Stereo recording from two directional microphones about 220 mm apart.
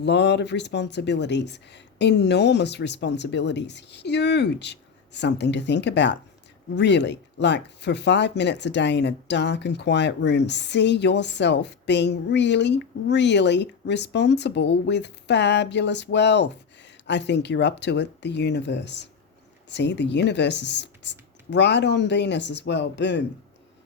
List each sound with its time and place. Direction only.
0.0 s speech: 50° left (ahead or behind)